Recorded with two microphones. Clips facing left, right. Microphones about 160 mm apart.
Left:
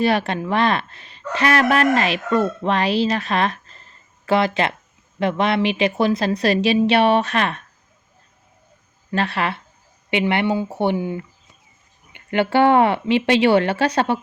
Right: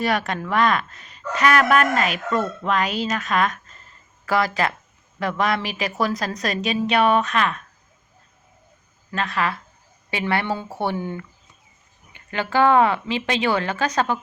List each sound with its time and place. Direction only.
0.0 s speech: 30° left (ahead or behind)
9.1 s speech: 30° left (ahead or behind); by 11.2 s 10° left (ahead or behind)
12.1 s speech: 25° left (ahead or behind)